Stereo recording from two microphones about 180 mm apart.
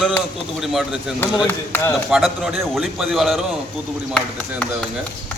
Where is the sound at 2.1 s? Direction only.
5° right (ahead or behind).